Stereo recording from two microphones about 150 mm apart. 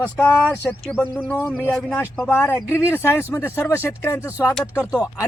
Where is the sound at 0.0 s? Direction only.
10° left (ahead or behind).